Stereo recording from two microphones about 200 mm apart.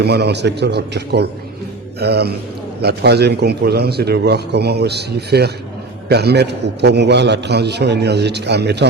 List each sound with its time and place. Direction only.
0.0 s a man's voice: 55° right (ahead or behind)